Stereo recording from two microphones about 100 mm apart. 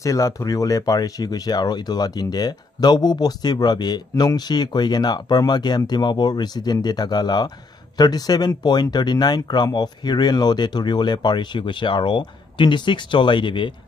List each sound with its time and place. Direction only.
0.0 s speech: 30° left (ahead or behind)
4.1 s speech: 30° left (ahead or behind)
4.4 s speech: 45° left (ahead or behind)